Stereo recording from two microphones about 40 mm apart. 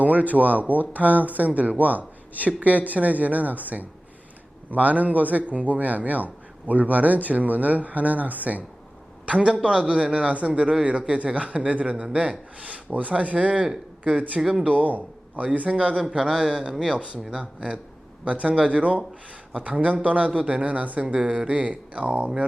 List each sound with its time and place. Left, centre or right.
0.0 s a man's voice: right
9.2 s a man's voice: right
16.0 s a man's voice: centre
18.3 s a man's voice: right